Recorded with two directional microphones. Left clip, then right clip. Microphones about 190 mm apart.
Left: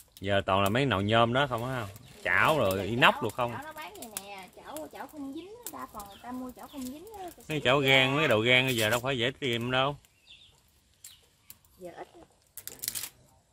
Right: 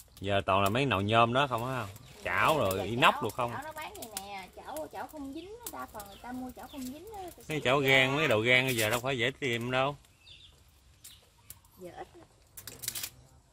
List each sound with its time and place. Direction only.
0.2 s speech: 20° left (ahead or behind)
3.5 s a sound: 50° left (ahead or behind)
7.4 s speech: 25° left (ahead or behind)
11.8 s speech: 50° left (ahead or behind)